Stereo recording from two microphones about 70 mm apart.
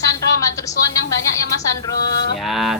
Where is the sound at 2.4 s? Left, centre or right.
Centre.